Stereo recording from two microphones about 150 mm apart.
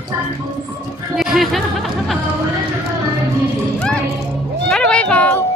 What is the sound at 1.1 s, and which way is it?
Music, centre (ahead or behind).